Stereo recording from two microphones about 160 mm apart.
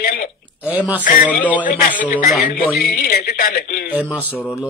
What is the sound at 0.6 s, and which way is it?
Speech, 10° right (ahead or behind).